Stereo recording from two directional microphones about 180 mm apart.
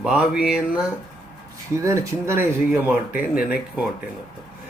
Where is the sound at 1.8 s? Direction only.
15° right (ahead or behind).